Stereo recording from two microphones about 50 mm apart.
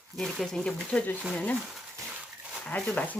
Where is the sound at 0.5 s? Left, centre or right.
Centre.